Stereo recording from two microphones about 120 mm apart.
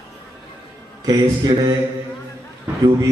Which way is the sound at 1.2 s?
35° right (ahead or behind).